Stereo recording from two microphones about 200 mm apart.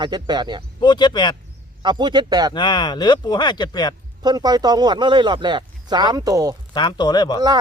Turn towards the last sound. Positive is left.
turn(degrees=20)  # may be behind; listen again after turning